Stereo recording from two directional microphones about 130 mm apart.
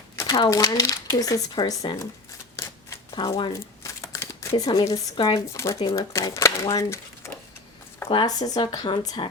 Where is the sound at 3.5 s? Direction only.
25° left (ahead or behind).